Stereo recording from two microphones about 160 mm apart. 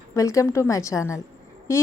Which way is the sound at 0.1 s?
20° left (ahead or behind).